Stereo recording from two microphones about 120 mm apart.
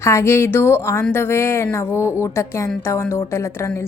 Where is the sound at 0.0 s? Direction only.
25° left (ahead or behind).